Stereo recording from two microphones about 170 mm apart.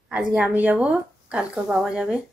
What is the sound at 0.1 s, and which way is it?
A woman's voice, 5° right (ahead or behind).